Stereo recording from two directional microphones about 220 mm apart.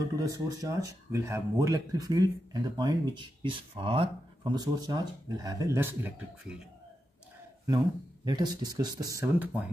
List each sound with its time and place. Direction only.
0.1 s speech: 15° right (ahead or behind)
8.3 s speech: 20° right (ahead or behind)